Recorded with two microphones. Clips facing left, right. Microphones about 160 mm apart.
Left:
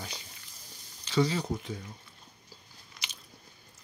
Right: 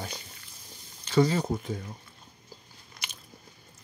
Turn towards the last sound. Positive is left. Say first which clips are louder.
# right 2 dB
turn(degrees=-50)  # may be behind; listen again after turning